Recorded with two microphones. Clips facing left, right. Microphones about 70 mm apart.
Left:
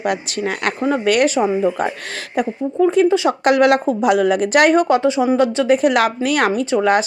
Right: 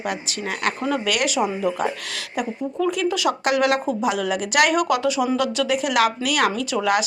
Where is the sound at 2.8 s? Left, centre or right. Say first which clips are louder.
Left 9 dB; left.